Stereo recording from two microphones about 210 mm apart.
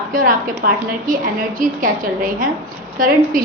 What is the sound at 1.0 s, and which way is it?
Speech, 40° right (ahead or behind).